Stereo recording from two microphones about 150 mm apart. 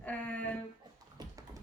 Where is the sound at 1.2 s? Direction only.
25° right (ahead or behind).